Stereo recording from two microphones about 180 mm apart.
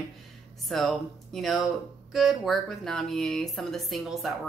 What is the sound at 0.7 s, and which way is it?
Speech, centre (ahead or behind).